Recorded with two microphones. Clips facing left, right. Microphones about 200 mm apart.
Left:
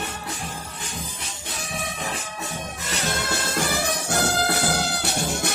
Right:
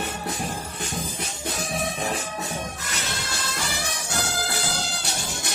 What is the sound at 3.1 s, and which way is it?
Music, 55° left (ahead or behind).